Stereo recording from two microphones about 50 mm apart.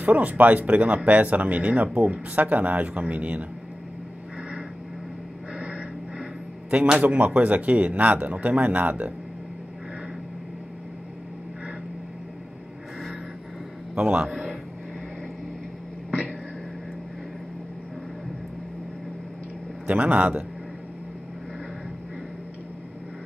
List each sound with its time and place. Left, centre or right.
0.0 s speech: right
5.6 s a sound: right
6.7 s speech: right
13.9 s speech: right
14.2 s speech: centre
19.9 s speech: right